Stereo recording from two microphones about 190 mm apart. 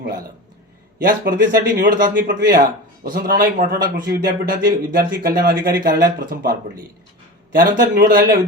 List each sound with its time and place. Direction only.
1.0 s speech: 50° right (ahead or behind)